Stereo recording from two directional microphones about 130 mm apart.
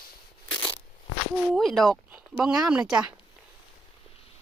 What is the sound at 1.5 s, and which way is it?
Speech, centre (ahead or behind).